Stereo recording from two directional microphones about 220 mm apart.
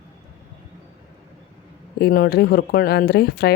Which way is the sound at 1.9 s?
45° left (ahead or behind).